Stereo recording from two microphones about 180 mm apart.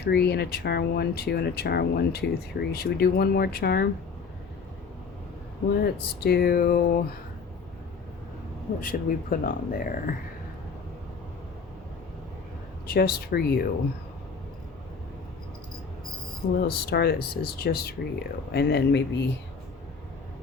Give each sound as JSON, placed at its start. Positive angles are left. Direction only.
{"t": 0.0, "sound": "speech", "side_deg": 65}
{"t": 5.8, "sound": "speech", "side_deg": 60}
{"t": 8.8, "sound": "speech", "side_deg": 50}
{"t": 12.9, "sound": "speech", "side_deg": 60}
{"t": 16.6, "sound": "speech", "side_deg": 60}